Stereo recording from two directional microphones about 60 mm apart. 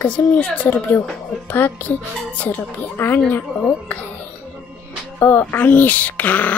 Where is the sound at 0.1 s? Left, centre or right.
Left.